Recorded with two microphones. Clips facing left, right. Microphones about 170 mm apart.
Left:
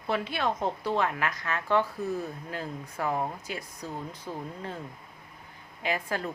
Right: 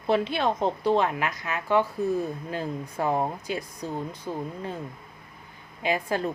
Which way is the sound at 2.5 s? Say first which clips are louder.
Right 5 dB; 25° right (ahead or behind).